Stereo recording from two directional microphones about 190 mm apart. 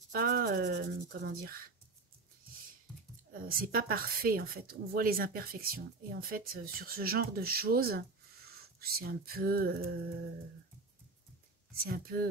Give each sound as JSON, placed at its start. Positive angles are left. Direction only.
{"t": 0.1, "sound": "speech", "side_deg": -55}
{"t": 3.3, "sound": "speech", "side_deg": -50}
{"t": 11.8, "sound": "speech", "side_deg": -50}